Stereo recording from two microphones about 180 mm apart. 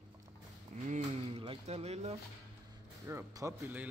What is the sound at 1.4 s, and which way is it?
Cutlery, 30° right (ahead or behind).